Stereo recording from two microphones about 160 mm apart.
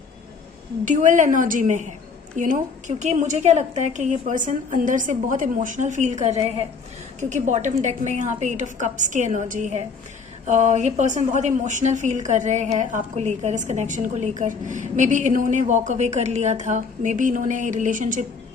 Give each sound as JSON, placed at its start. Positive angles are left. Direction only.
{"t": 0.8, "sound": "a woman's voice", "side_deg": -50}